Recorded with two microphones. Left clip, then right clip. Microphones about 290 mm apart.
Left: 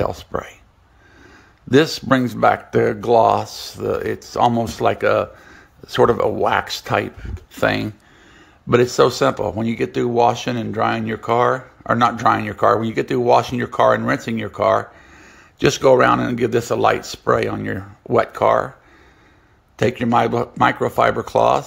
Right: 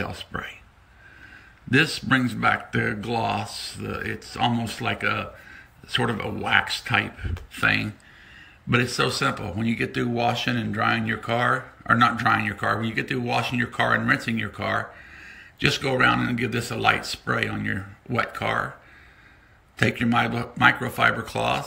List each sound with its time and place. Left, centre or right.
0.0 s speech: centre
1.7 s speech: centre
8.9 s speech: centre
19.8 s speech: centre